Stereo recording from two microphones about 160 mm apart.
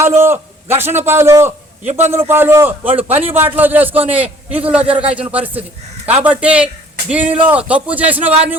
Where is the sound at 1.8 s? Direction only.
45° right (ahead or behind).